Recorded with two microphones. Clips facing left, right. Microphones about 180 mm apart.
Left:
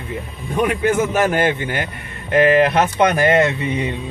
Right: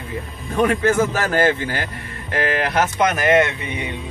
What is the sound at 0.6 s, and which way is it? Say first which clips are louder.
Speech: right 1 dB; 15° left (ahead or behind).